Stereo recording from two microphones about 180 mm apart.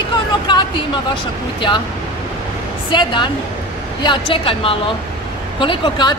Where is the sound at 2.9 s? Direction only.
25° left (ahead or behind).